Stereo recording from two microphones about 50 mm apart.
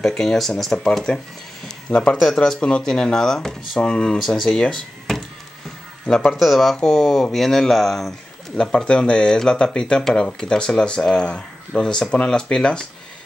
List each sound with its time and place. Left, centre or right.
0.0 s a man's voice: centre
6.3 s speech: centre
8.5 s speech: centre